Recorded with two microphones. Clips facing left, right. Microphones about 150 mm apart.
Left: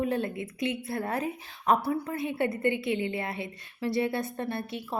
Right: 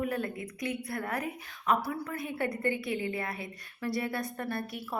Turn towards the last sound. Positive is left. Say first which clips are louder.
# left 2 dB
turn(degrees=25)  # may be behind; listen again after turning